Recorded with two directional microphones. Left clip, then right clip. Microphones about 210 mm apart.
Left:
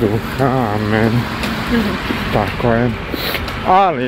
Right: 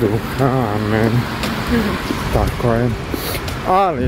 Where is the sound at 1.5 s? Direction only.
60° right (ahead or behind).